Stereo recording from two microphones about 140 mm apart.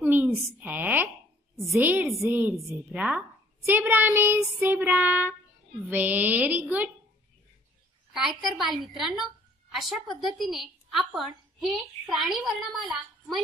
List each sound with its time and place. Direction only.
0.0 s a woman's voice: 15° right (ahead or behind)
8.1 s a woman's voice: centre (ahead or behind)